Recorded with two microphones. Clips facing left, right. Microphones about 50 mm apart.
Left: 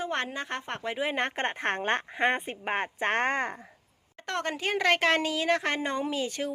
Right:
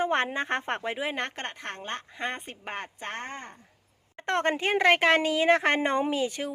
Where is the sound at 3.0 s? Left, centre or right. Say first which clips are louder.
Left 11 dB; left.